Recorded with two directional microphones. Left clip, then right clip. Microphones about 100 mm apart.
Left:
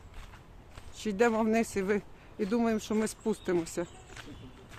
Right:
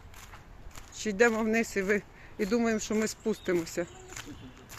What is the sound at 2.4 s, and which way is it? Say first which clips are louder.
Speech: right 2 dB; centre (ahead or behind).